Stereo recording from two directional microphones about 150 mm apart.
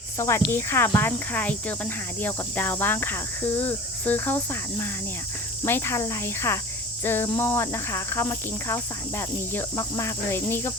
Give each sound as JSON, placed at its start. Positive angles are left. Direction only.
{"t": 0.2, "sound": "speech", "side_deg": 15}